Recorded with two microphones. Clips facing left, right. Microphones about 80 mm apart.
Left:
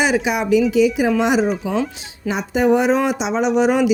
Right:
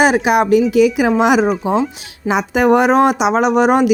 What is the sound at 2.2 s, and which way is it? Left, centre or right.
A woman's voice, right.